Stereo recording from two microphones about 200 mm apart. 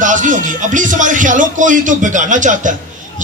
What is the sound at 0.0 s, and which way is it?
Speech, 40° right (ahead or behind).